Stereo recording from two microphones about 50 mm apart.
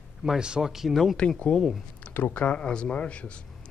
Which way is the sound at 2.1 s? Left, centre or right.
Left.